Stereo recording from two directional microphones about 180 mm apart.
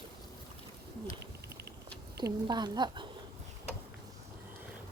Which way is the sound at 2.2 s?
20° right (ahead or behind).